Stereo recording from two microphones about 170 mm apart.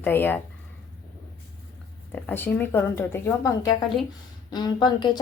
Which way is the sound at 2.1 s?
10° left (ahead or behind).